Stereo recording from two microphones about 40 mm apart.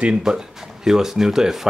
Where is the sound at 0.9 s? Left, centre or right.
Centre.